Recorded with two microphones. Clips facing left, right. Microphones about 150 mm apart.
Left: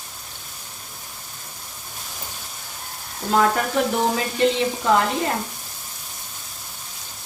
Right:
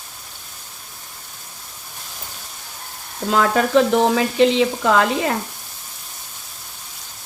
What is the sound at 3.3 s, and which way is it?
Frying, 90° right.